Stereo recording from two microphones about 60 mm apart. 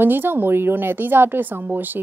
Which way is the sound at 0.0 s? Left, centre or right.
Right.